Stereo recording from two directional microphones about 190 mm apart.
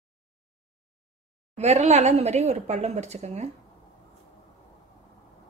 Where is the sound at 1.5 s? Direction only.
35° right (ahead or behind).